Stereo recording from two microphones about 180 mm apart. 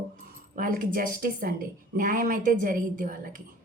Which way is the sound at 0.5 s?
50° right (ahead or behind).